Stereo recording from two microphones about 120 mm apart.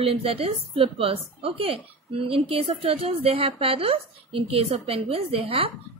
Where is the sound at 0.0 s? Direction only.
50° right (ahead or behind).